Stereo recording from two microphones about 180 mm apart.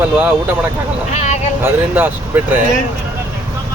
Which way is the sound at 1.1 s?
40° left (ahead or behind).